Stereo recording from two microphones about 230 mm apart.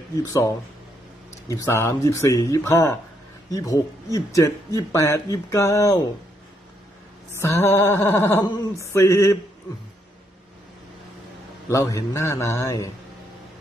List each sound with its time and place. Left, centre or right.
1.5 s speech: centre
7.3 s speech: centre
11.7 s speech: centre